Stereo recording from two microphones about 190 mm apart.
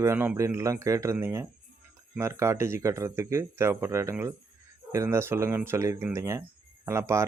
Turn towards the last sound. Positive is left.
turn(degrees=-15)  # may be behind; listen again after turning